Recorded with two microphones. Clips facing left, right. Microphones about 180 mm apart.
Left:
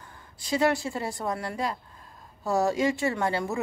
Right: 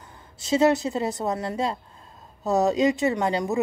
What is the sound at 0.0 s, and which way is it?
A woman's voice, 20° right (ahead or behind).